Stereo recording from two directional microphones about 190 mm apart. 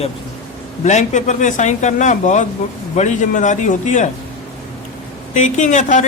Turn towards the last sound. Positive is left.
turn(degrees=40)  # may be behind; listen again after turning